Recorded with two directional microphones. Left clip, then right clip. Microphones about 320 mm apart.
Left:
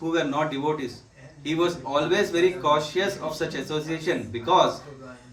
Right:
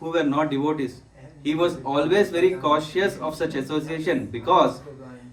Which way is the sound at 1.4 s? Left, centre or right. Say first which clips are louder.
Right 2 dB; right.